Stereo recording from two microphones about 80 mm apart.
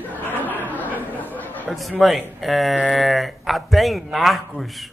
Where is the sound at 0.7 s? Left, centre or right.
Left.